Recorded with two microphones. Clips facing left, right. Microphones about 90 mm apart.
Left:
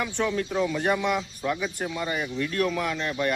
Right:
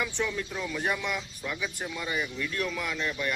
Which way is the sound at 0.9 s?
40° left (ahead or behind).